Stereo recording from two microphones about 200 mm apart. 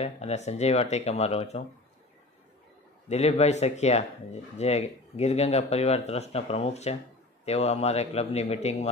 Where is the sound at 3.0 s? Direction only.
30° left (ahead or behind).